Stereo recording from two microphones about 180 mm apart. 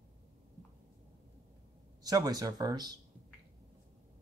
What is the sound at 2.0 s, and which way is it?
Speech, 20° right (ahead or behind).